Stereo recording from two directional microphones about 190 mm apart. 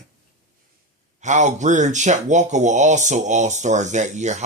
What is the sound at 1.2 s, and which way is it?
Speech, 40° right (ahead or behind).